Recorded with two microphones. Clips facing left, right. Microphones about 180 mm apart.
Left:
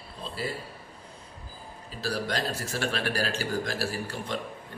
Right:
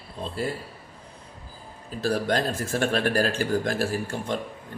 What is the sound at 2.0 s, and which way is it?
A man's voice, 50° right (ahead or behind).